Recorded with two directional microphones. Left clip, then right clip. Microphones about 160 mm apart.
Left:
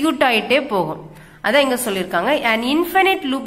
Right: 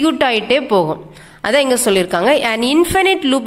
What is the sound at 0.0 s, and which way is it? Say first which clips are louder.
A woman's voice: right 2 dB; 30° right (ahead or behind).